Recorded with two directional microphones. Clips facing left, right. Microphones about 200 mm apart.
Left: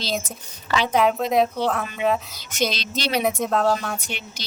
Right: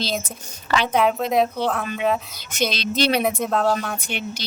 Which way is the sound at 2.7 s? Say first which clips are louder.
Right 6 dB; 55° right (ahead or behind).